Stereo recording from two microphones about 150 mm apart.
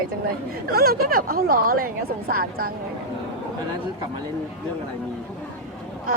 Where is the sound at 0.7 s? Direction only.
90° right; by 2.7 s 75° right (ahead or behind).